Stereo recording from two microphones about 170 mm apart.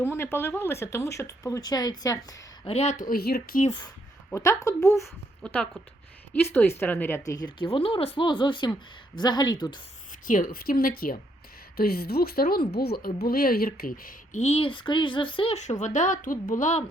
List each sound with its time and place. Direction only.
0.0 s speech: 15° left (ahead or behind)
2.6 s speech: 40° left (ahead or behind)
3.1 s speech: 65° left (ahead or behind)
3.7 s speech: 25° left (ahead or behind)
5.4 s a woman's voice: 5° left (ahead or behind)
7.3 s speech: 25° left (ahead or behind)
10.2 s speech: 55° left (ahead or behind)
14.4 s a woman's voice: 35° left (ahead or behind)